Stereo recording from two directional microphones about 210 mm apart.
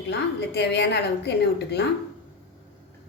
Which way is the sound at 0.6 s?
55° left (ahead or behind).